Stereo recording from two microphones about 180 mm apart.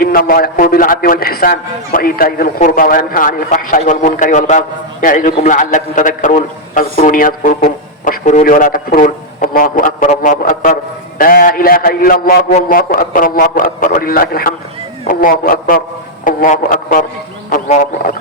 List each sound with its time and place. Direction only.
0.0 s a man's voice: 55° left (ahead or behind)